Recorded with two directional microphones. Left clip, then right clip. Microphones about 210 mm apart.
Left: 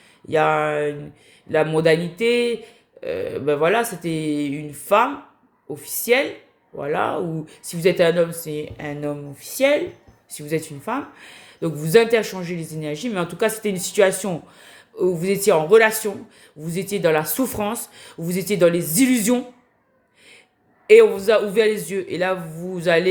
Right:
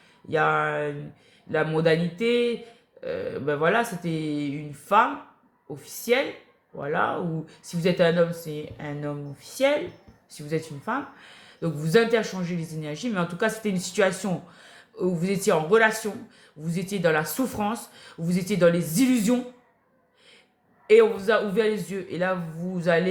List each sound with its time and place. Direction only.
0.3 s speech: 35° left (ahead or behind)
20.8 s speech: 35° left (ahead or behind)